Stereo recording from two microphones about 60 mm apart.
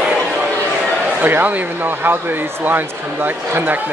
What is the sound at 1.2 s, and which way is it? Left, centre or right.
Speech, right.